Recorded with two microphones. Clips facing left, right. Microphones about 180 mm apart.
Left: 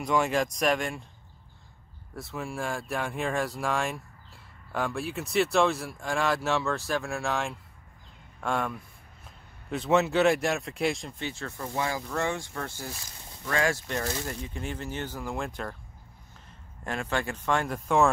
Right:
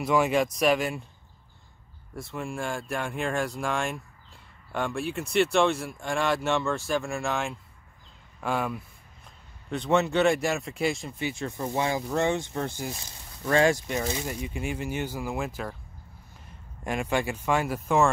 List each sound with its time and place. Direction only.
0.0 s speech: 5° right (ahead or behind)
2.1 s speech: centre (ahead or behind); by 13.7 s 25° right (ahead or behind)
13.7 s speech: 15° right (ahead or behind)
16.8 s speech: 15° right (ahead or behind)